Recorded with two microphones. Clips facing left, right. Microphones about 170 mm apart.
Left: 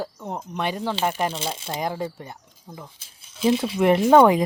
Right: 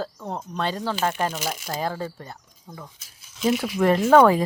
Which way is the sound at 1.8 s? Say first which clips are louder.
Left 2 dB; 15° left (ahead or behind).